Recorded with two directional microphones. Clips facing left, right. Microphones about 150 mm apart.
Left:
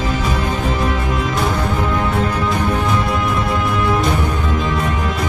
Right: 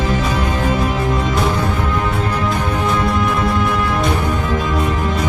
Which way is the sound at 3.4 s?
Centre (ahead or behind).